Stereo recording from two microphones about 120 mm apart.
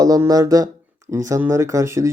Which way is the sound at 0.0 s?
30° right (ahead or behind).